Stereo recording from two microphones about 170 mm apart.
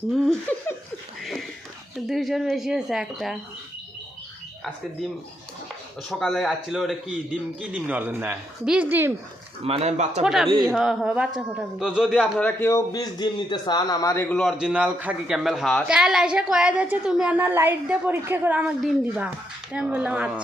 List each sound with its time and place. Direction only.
1.2 s a sound: centre (ahead or behind)
2.0 s speech: centre (ahead or behind)
6.1 s a woman's voice: centre (ahead or behind)
9.6 s speech: 40° right (ahead or behind)
10.2 s speech: centre (ahead or behind)
12.4 s a man's voice: 10° left (ahead or behind)
14.3 s a woman's voice: centre (ahead or behind)